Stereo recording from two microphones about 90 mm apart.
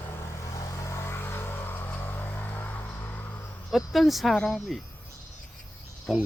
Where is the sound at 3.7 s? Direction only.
Centre (ahead or behind).